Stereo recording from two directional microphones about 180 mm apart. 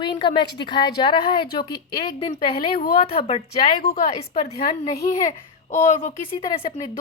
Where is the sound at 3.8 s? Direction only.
55° left (ahead or behind).